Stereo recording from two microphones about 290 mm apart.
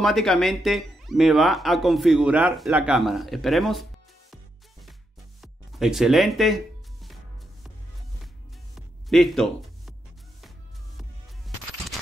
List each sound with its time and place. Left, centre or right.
0.0 s speech: centre
5.4 s music: centre
8.7 s music: centre